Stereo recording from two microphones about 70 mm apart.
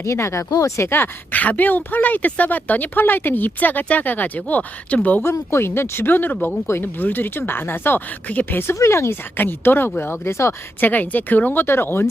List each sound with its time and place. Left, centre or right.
0.0 s speech: left
0.8 s a woman's voice: left
5.2 s a woman's voice: left
8.7 s speech: left
9.4 s speech: left
10.8 s a woman's voice: left